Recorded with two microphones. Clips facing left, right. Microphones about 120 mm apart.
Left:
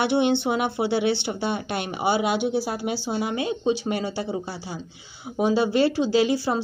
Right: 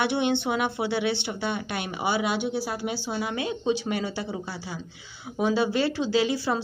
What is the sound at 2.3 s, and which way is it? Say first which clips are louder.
Speech: left 4 dB; 15° left (ahead or behind).